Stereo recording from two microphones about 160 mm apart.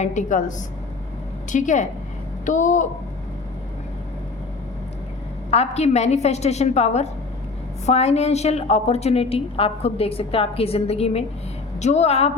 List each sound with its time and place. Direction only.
0.0 s a woman's voice: 50° left (ahead or behind)
5.5 s a woman's voice: 40° left (ahead or behind)